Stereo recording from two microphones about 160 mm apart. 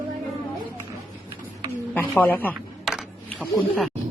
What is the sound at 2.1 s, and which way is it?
Speech, 10° left (ahead or behind).